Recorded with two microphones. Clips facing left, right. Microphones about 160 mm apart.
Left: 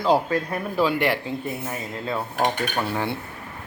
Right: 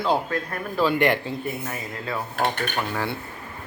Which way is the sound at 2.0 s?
20° left (ahead or behind).